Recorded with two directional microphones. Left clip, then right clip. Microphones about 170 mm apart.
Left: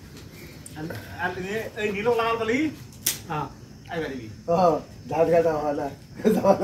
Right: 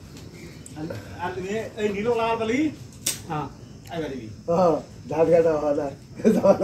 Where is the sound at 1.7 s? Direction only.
15° right (ahead or behind).